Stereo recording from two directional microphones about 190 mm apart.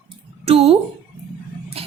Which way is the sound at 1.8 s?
30° right (ahead or behind).